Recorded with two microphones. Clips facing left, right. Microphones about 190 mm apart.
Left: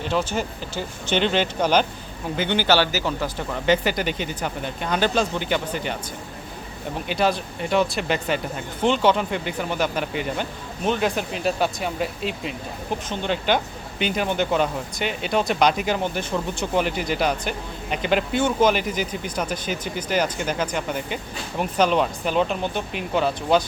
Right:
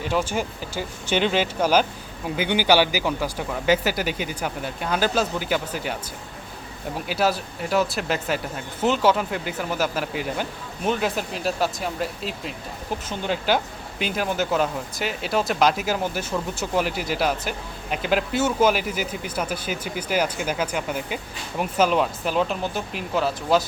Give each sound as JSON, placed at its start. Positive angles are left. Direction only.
{"t": 0.0, "sound": "speech", "side_deg": -10}
{"t": 7.1, "sound": "speech", "side_deg": -5}